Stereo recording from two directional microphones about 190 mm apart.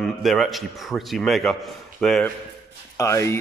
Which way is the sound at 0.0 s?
Centre (ahead or behind).